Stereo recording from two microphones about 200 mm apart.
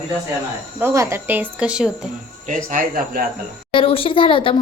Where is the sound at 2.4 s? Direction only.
40° right (ahead or behind).